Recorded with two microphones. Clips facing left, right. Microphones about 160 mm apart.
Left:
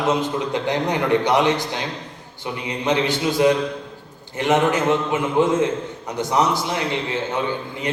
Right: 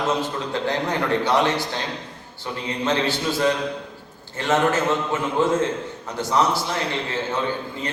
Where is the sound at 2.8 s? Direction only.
15° left (ahead or behind).